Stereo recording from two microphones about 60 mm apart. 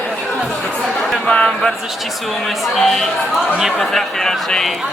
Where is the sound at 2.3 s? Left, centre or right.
Centre.